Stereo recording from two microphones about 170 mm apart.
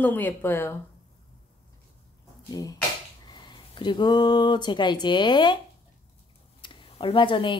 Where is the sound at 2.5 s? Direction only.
20° left (ahead or behind).